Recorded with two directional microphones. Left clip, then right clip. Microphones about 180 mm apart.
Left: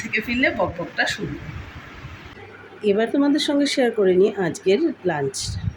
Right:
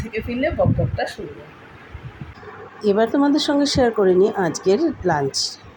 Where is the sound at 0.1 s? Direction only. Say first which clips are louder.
Left 2 dB; 25° right (ahead or behind).